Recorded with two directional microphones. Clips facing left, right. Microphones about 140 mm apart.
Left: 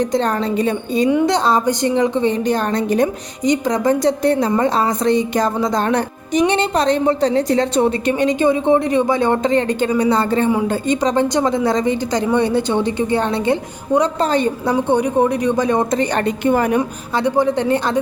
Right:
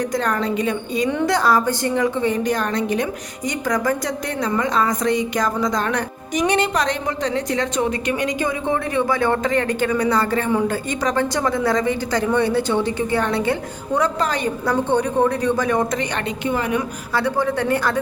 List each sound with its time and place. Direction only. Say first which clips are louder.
0.0 s a woman's voice: left 4 dB; 25° left (ahead or behind)
3.4 s a woman's voice: left 5 dB; 20° left (ahead or behind)
14.8 s speech: left 3 dB; 15° left (ahead or behind)
16.0 s a woman's voice: left 6 dB; 40° left (ahead or behind)
17.2 s a woman's voice: left 4 dB; 20° left (ahead or behind)